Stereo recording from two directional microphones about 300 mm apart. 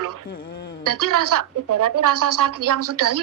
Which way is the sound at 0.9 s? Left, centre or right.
Right.